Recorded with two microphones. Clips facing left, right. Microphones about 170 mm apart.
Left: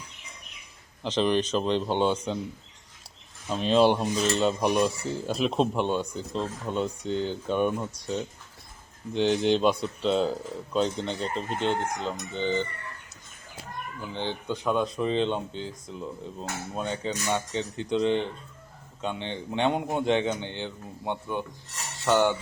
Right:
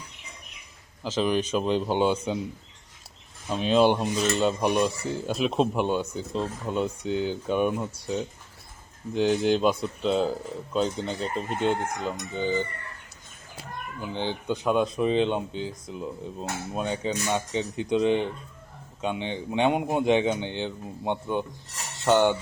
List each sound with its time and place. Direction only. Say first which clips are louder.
1.0 s speech: left 1 dB; 5° right (ahead or behind)
3.5 s speech: even; centre (ahead or behind)
9.1 s speech: right 1 dB; 5° right (ahead or behind)
14.1 s speech: right 3 dB; 15° right (ahead or behind)